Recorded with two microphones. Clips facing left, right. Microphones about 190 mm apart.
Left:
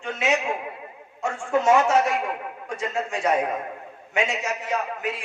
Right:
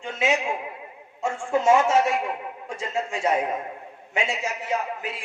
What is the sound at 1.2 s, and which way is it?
A man's voice, 25° right (ahead or behind).